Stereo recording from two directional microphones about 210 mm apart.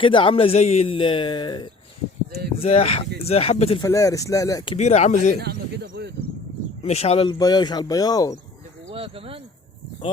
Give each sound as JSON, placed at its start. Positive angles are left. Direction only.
{"t": 0.0, "sound": "speech", "side_deg": 25}
{"t": 3.8, "sound": "speech", "side_deg": 15}
{"t": 5.4, "sound": "a man's voice", "side_deg": -50}
{"t": 6.8, "sound": "speech", "side_deg": 30}
{"t": 8.9, "sound": "speech", "side_deg": -25}